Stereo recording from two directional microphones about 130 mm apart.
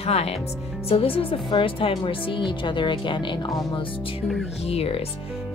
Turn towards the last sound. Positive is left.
turn(degrees=50)  # may be behind; listen again after turning